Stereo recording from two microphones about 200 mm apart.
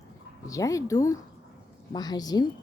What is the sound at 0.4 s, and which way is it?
A woman's voice, 15° left (ahead or behind).